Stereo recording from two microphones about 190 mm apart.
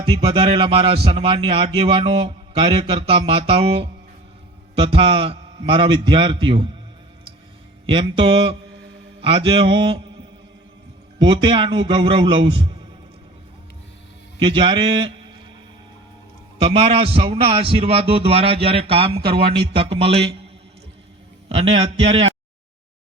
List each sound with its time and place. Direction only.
0.0 s a man's voice: 25° right (ahead or behind)
7.9 s a man's voice: 25° right (ahead or behind)
11.2 s a man's voice: 25° right (ahead or behind)
14.4 s a man's voice: 25° right (ahead or behind)
16.6 s a man's voice: 30° right (ahead or behind)
21.5 s a man's voice: 30° right (ahead or behind)